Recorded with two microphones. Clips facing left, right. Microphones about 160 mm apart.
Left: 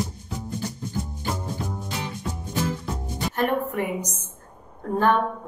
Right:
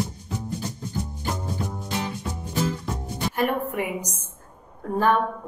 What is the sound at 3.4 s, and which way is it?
Speech, 10° right (ahead or behind).